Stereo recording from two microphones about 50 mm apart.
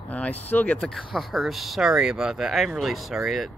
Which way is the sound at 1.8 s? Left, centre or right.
Centre.